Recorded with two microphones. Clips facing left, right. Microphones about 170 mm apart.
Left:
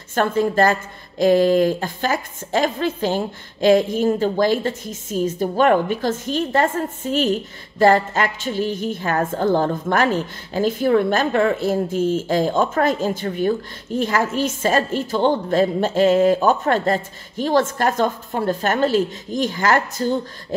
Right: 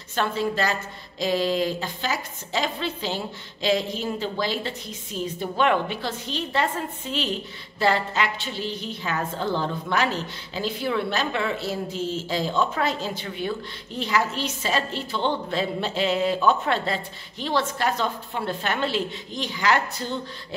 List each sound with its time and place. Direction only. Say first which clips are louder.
0.1 s a woman's voice: left 6 dB; 50° left (ahead or behind)